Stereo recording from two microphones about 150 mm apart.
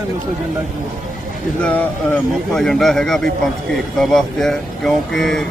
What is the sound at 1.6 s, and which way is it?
Speech, 10° left (ahead or behind).